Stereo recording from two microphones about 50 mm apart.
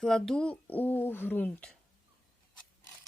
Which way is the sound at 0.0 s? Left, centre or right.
Centre.